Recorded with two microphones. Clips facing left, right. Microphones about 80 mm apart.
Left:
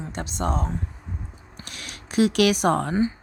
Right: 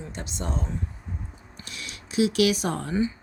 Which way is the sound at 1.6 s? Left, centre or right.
Left.